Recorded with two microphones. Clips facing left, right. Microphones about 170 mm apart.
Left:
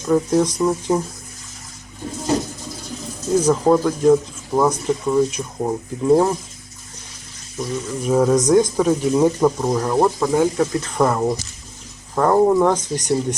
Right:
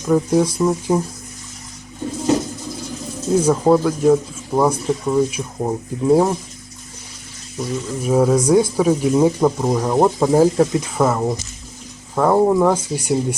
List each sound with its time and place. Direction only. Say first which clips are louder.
0.0 s speech: right 1 dB; 5° right (ahead or behind)
3.3 s speech: right 1 dB; 5° right (ahead or behind)
7.6 s speech: right 1 dB; 5° right (ahead or behind)
10.2 s speech: right 4 dB; 30° right (ahead or behind)
10.7 s speech: right 1 dB; 10° right (ahead or behind)